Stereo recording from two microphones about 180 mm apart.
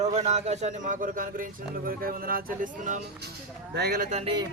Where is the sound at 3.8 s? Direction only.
60° right (ahead or behind).